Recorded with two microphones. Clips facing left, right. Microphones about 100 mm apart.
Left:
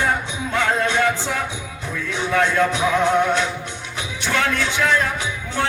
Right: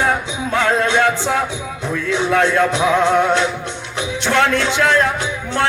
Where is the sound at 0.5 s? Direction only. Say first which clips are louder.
Right 4 dB; 90° right.